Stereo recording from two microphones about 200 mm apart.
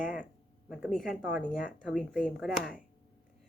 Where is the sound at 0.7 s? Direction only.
Centre (ahead or behind).